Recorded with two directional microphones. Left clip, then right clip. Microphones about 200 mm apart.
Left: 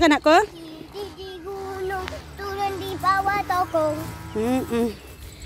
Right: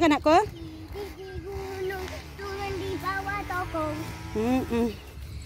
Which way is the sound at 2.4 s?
30° left (ahead or behind).